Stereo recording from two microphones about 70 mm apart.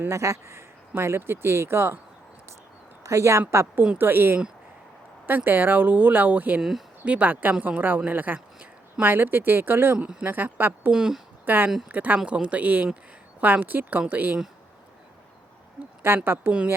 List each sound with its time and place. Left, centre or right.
0.1 s speech: right
3.0 s speech: right
3.9 s speech: right
5.5 s speech: right
6.6 s speech: centre
7.0 s speech: centre
10.9 s speech: centre
11.4 s speech: right
16.0 s speech: right